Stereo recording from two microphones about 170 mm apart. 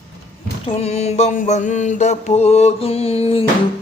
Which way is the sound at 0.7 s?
35° left (ahead or behind).